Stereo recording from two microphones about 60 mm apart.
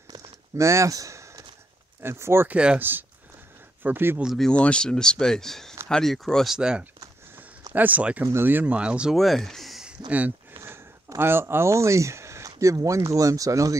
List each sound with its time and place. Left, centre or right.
0.6 s speech: right
2.0 s speech: right
2.4 s speech: centre
2.8 s speech: right
4.5 s speech: centre
6.5 s speech: centre
7.3 s a sound: right
8.5 s speech: right
8.7 s speech: centre
9.1 s speech: centre
9.8 s a sound: right
11.1 s speech: right